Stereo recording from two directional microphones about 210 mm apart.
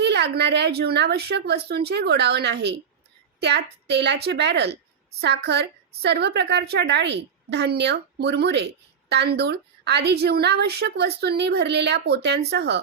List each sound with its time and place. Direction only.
0.0 s a woman's voice: 50° right (ahead or behind)